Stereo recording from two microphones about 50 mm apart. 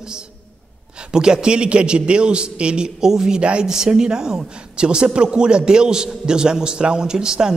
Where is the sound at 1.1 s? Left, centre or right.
Centre.